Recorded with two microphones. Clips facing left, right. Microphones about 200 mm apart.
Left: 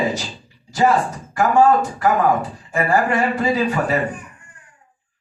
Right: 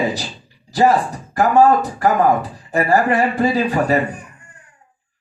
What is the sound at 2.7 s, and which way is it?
Speech, 35° right (ahead or behind).